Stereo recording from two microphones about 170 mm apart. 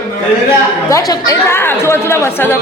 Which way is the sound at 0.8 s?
20° left (ahead or behind).